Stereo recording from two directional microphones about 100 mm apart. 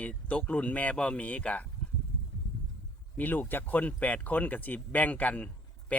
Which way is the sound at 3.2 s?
20° left (ahead or behind).